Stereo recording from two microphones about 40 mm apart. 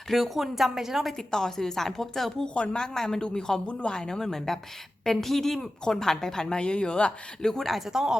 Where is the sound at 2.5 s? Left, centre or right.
Left.